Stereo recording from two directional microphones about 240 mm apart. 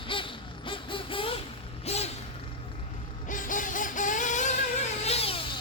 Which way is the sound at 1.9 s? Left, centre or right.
Left.